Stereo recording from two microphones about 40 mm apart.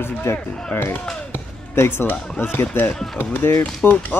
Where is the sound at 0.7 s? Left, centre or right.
Left.